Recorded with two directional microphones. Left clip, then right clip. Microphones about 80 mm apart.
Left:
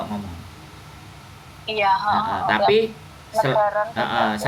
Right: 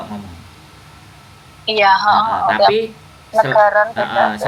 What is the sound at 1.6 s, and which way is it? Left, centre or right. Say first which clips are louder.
Speech: right 7 dB; right.